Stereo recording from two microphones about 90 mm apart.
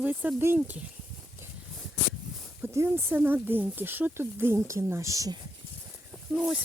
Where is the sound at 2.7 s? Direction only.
30° right (ahead or behind).